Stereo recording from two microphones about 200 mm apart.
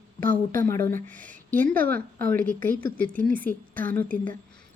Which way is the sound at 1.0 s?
40° right (ahead or behind).